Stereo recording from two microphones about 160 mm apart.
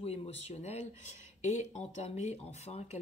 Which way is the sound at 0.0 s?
40° left (ahead or behind).